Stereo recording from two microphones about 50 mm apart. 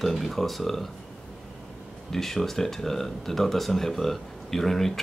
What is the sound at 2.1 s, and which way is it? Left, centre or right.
Speech, centre.